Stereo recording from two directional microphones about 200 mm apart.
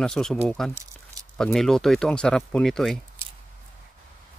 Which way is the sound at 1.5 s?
Centre (ahead or behind).